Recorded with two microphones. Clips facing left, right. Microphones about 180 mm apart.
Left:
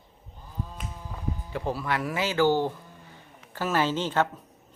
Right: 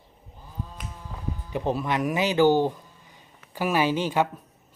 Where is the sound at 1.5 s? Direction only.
20° right (ahead or behind).